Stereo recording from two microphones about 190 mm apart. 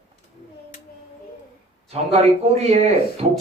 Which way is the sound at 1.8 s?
35° right (ahead or behind).